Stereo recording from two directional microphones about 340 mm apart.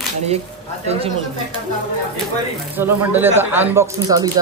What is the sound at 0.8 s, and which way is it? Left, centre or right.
Speech, centre.